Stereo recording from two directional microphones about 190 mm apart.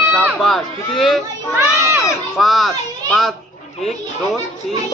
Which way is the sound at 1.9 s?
Centre (ahead or behind).